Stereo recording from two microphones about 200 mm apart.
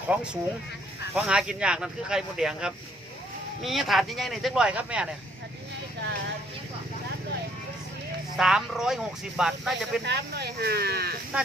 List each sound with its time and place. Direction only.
0.1 s speech: 5° right (ahead or behind)
8.4 s speech: centre (ahead or behind)
10.0 s speech: 55° right (ahead or behind)